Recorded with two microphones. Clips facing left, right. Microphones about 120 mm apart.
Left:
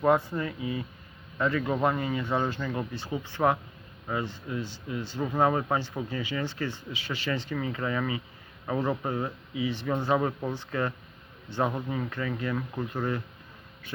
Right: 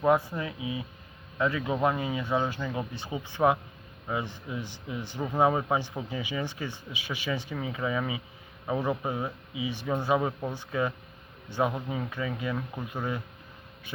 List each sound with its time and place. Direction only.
0.0 s speech: 10° right (ahead or behind)